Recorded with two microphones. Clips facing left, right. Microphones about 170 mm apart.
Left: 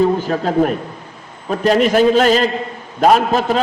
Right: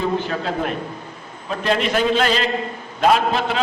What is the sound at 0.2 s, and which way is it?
A man's voice, 40° left (ahead or behind).